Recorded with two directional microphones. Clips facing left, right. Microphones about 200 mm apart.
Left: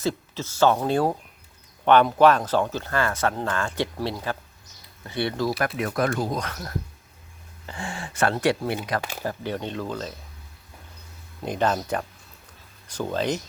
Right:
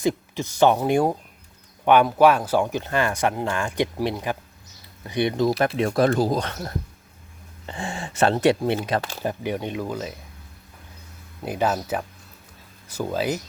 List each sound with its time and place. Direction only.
0.0 s speech: 15° right (ahead or behind)
5.5 s speech: 25° right (ahead or behind); by 10.1 s 10° right (ahead or behind)
11.4 s speech: 5° right (ahead or behind)